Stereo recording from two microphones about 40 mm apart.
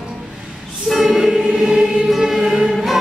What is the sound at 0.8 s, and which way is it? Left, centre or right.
Choir, centre.